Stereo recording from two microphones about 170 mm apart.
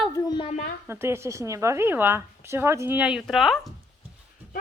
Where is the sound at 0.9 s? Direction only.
15° right (ahead or behind).